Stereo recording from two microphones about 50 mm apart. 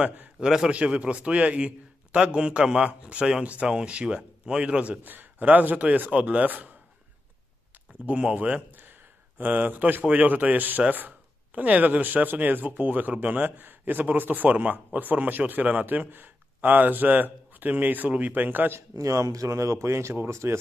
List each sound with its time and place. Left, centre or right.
0.4 s a man's voice: centre
0.7 s speech: right
5.0 s speech: right
8.1 s speech: right
8.8 s a sound: right
10.0 s speech: right
18.8 s a man's voice: right
20.4 s speech: right